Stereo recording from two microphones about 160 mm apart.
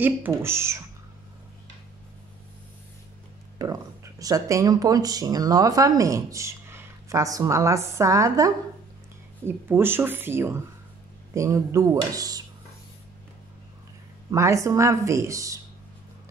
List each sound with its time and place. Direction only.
0.0 s speech: 15° right (ahead or behind)
3.5 s speech: 20° right (ahead or behind)
14.3 s speech: 20° right (ahead or behind)